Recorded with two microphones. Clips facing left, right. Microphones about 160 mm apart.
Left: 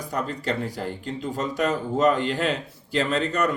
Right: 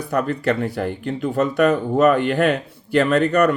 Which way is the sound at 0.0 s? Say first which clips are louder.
Right 8 dB; 65° right (ahead or behind).